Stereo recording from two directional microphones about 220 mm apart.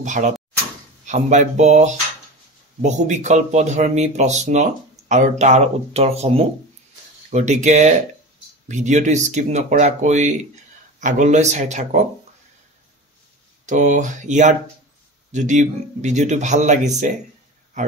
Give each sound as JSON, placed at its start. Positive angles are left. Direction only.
{"t": 0.0, "sound": "speech", "side_deg": -35}
{"t": 13.7, "sound": "speech", "side_deg": -35}